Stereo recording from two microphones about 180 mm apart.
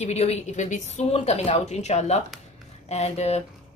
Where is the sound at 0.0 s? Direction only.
35° left (ahead or behind).